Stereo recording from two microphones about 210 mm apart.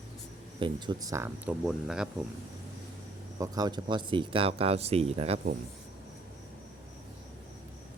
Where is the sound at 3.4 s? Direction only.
20° right (ahead or behind).